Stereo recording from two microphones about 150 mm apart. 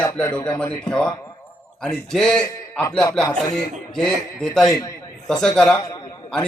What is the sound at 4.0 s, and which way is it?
Speech, 5° left (ahead or behind).